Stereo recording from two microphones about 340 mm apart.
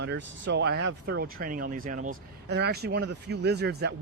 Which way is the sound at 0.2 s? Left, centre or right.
Right.